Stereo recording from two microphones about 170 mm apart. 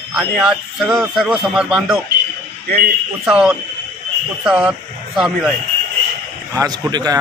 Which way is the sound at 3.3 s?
5° right (ahead or behind).